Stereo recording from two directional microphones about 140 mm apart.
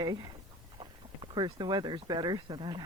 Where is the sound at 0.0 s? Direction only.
30° right (ahead or behind).